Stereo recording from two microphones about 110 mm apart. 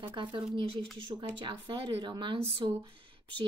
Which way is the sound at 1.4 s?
45° right (ahead or behind).